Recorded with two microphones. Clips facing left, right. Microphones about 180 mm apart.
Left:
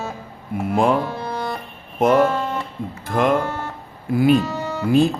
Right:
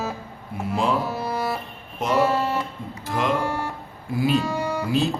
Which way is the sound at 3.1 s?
50° left (ahead or behind).